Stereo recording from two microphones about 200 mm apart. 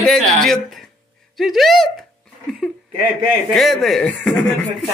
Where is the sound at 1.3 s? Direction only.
Centre (ahead or behind).